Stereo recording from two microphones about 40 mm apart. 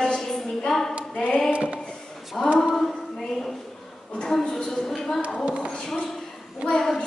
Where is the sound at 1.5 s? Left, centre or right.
Right.